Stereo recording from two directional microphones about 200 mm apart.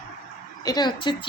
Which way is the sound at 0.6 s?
20° left (ahead or behind).